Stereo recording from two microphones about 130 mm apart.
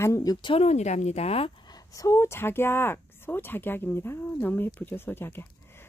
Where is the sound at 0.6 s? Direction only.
60° left (ahead or behind).